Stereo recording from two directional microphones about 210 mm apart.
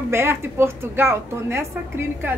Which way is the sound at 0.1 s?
10° right (ahead or behind).